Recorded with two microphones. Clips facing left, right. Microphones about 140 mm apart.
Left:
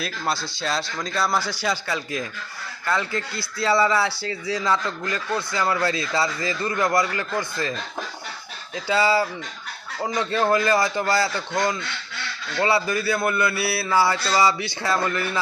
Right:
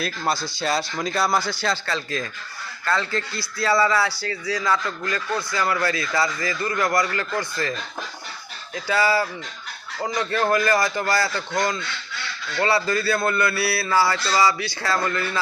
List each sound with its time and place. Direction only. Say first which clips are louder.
0.0 s a man's voice: right 2 dB; centre (ahead or behind); by 7.7 s 20° left (ahead or behind)
8.7 s a man's voice: left 1 dB; 20° left (ahead or behind)